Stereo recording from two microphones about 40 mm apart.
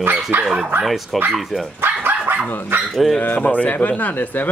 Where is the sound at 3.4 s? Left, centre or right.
Left.